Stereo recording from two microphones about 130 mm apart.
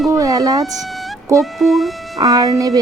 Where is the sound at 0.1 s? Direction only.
25° right (ahead or behind).